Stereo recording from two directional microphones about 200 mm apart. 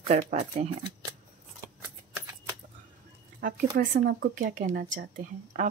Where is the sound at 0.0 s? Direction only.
35° right (ahead or behind).